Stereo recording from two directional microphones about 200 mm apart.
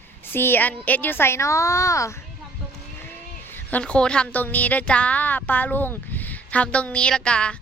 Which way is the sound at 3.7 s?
5° left (ahead or behind).